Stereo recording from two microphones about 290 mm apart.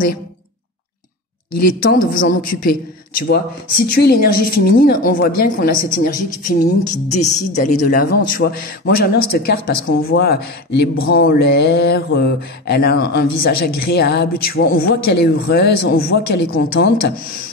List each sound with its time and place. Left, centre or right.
1.7 s a woman's voice: left